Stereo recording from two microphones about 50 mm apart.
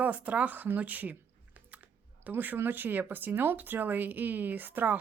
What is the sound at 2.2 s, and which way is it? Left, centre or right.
Speech, right.